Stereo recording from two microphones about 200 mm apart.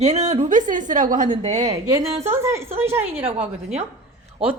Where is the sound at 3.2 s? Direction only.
30° right (ahead or behind).